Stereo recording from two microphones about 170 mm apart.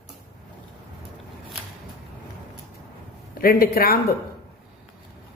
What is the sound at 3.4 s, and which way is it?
Speech, 60° left (ahead or behind).